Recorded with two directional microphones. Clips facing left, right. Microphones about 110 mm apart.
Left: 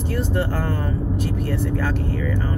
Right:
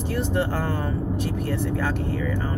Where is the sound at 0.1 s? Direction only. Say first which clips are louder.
Left 1 dB; 20° right (ahead or behind).